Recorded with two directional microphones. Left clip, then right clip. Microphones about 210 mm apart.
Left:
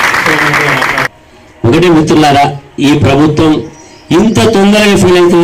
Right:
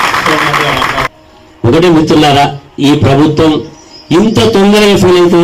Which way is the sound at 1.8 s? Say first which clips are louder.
Even; 25° left (ahead or behind).